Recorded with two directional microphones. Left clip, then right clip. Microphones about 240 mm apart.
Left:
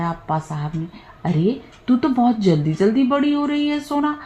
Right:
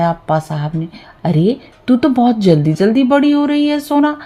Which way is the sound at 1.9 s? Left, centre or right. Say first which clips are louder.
Right 5 dB; right.